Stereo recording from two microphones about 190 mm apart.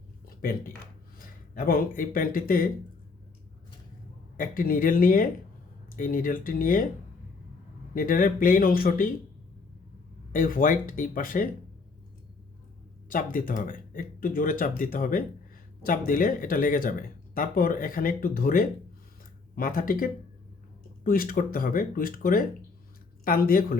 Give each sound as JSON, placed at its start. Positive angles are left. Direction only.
{"t": 0.3, "sound": "a sound", "side_deg": 50}
{"t": 1.5, "sound": "speech", "side_deg": 50}
{"t": 4.4, "sound": "speech", "side_deg": 45}
{"t": 7.9, "sound": "speech", "side_deg": 45}
{"t": 10.3, "sound": "speech", "side_deg": 45}
{"t": 13.1, "sound": "speech", "side_deg": 45}